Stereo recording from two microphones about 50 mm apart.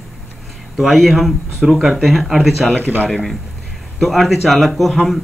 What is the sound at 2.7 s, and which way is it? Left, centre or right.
Speech, right.